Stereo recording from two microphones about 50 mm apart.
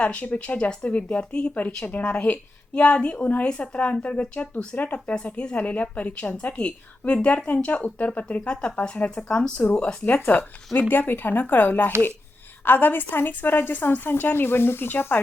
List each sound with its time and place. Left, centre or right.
0.3 s a woman's voice: left
7.0 s a woman's voice: left
7.4 s speech: left
8.4 s a woman's voice: centre
9.8 s a woman's voice: left